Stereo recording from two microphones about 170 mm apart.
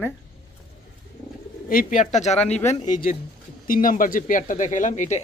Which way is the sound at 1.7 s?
50° left (ahead or behind).